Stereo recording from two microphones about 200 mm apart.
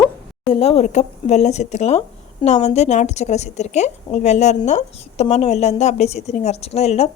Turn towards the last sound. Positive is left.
turn(degrees=30)  # may be behind; listen again after turning